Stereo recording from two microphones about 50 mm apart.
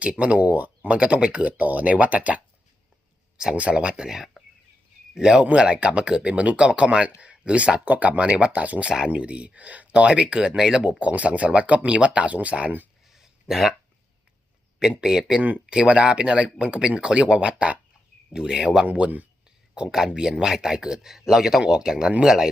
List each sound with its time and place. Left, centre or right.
0.0 s speech: right
3.5 s speech: right
11.0 s speech: right
13.1 s a sound: centre
14.8 s speech: centre
18.9 s speech: right
19.7 s speech: centre